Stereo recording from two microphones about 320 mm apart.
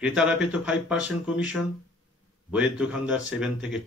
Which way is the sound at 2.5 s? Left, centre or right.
Centre.